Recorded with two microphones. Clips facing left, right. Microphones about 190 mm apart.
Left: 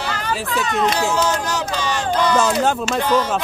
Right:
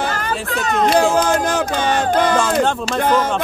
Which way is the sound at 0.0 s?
50° right (ahead or behind).